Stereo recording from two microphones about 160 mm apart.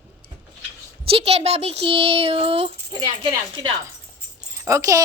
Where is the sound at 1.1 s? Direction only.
40° right (ahead or behind).